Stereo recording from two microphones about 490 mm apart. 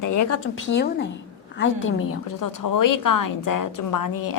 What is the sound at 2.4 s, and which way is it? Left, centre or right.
A woman's voice, left.